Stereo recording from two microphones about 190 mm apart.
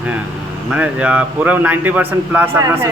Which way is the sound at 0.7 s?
5° right (ahead or behind).